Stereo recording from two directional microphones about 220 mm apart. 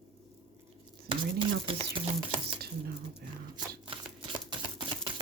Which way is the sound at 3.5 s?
20° right (ahead or behind).